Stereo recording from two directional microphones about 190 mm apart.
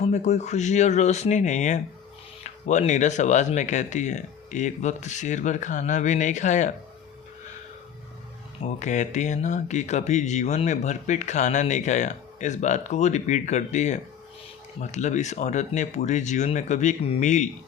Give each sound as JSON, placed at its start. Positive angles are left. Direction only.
{"t": 0.0, "sound": "speech", "side_deg": 35}
{"t": 8.6, "sound": "speech", "side_deg": 40}